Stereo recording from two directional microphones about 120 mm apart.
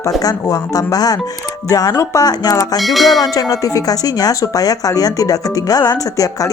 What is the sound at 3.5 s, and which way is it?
Speech, 30° left (ahead or behind).